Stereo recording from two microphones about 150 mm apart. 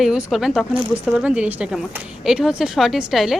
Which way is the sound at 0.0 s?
Centre (ahead or behind).